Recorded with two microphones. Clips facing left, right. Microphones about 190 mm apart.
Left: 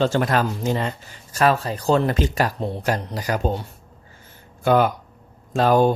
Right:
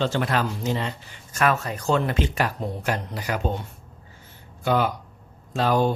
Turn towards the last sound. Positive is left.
turn(degrees=50)  # may be behind; listen again after turning